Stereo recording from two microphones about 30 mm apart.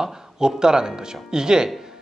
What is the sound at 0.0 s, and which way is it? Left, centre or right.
Speech, right.